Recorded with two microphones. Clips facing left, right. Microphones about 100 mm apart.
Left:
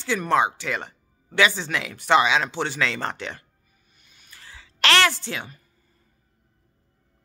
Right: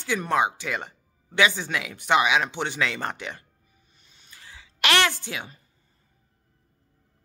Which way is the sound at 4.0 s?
30° right (ahead or behind).